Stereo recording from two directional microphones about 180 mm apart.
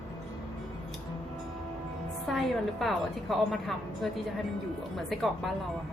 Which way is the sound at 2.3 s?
Centre (ahead or behind).